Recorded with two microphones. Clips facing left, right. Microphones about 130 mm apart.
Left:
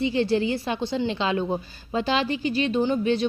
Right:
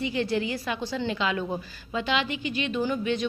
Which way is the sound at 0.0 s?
30° left (ahead or behind).